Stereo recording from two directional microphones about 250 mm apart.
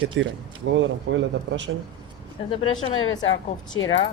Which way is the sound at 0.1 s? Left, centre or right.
Right.